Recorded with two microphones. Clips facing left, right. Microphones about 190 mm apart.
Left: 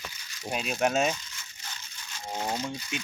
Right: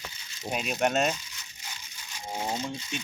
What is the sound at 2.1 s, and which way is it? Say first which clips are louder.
Speech: even; 15° right (ahead or behind).